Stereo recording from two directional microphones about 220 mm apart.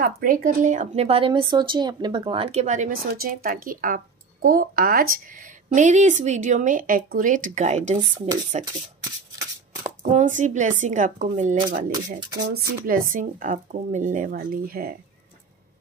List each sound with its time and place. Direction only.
0.0 s a woman's voice: 40° right (ahead or behind)
10.0 s a woman's voice: 35° right (ahead or behind)
11.9 s speech: 20° right (ahead or behind)
12.4 s a woman's voice: 45° right (ahead or behind)